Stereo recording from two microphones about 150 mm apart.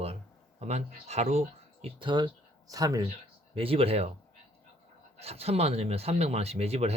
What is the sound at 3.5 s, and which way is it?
Speech, 40° right (ahead or behind).